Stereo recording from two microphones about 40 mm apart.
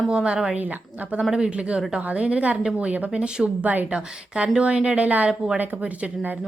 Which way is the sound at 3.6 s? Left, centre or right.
Right.